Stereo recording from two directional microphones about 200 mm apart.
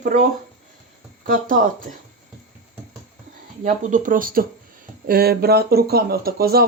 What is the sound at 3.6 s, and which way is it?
Speech, 40° right (ahead or behind).